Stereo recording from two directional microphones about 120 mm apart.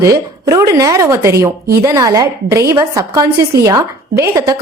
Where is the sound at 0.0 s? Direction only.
30° right (ahead or behind).